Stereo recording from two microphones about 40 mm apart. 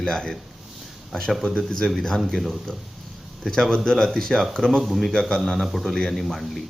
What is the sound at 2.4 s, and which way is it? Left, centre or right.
Speech, centre.